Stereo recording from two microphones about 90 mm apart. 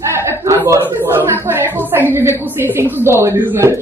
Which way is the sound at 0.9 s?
25° right (ahead or behind).